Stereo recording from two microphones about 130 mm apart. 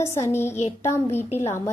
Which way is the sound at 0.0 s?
20° left (ahead or behind).